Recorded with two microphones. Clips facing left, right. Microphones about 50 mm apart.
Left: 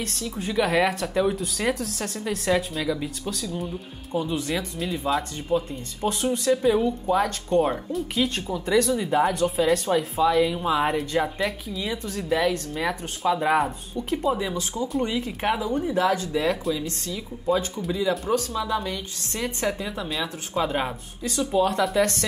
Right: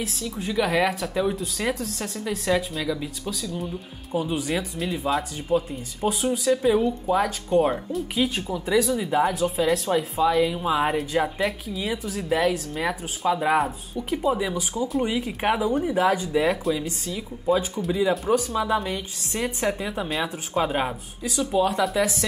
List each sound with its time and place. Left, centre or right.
0.0 s speech: centre
4.1 s speech: centre
17.5 s speech: centre
18.5 s speech: right
20.1 s speech: centre